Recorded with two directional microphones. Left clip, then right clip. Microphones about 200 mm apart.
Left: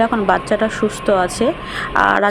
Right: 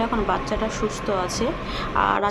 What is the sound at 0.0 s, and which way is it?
A woman's voice, 25° left (ahead or behind).